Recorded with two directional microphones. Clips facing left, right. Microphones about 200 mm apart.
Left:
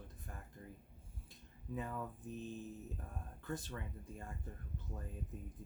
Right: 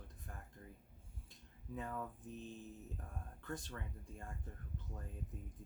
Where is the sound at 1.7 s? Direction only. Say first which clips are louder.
Left 2 dB; 5° left (ahead or behind).